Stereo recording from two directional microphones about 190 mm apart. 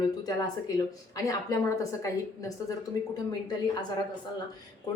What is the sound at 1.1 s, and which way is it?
A woman's voice, 15° left (ahead or behind).